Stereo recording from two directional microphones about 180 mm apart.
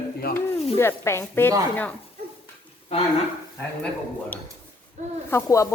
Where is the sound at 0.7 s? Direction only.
15° left (ahead or behind).